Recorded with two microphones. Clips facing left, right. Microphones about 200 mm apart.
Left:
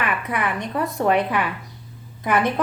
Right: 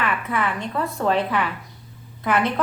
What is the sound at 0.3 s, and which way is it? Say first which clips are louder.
A woman's voice: even; 15° left (ahead or behind).